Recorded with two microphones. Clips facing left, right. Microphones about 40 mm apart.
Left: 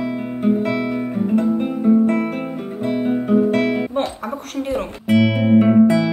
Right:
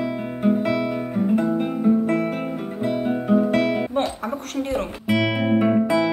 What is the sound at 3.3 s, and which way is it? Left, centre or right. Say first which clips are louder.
Guitar: left 2 dB; centre.